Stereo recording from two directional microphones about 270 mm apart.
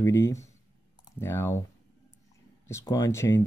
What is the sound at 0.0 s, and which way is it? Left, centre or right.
Speech, centre.